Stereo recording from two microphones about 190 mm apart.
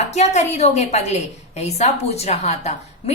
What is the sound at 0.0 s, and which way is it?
A woman's voice, 35° left (ahead or behind).